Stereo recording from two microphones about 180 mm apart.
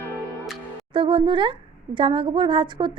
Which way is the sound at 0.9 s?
25° right (ahead or behind).